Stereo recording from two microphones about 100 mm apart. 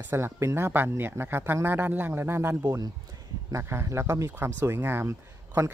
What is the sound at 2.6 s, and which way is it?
Speech, 35° right (ahead or behind).